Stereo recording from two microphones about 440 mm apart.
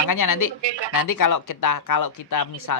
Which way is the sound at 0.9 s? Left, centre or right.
Left.